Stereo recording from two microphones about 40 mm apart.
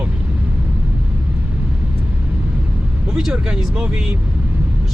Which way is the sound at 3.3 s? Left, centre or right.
Right.